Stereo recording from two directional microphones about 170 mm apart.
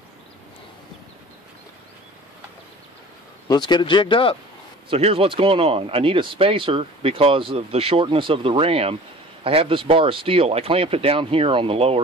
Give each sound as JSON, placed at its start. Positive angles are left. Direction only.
{"t": 3.4, "sound": "speech", "side_deg": 25}
{"t": 4.8, "sound": "speech", "side_deg": -35}